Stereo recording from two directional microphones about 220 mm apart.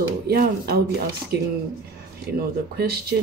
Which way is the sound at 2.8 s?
45° right (ahead or behind).